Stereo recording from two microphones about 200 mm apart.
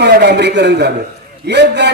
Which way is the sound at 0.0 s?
60° right (ahead or behind).